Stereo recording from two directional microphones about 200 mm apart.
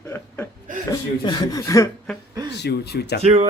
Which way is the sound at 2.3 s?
20° right (ahead or behind).